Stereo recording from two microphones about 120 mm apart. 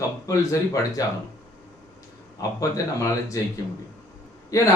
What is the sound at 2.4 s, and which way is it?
A man's voice, 30° left (ahead or behind).